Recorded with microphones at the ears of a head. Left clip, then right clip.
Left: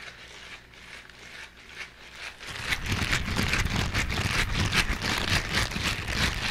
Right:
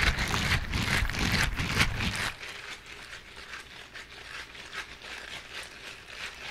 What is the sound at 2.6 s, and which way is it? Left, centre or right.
Vehicle, left.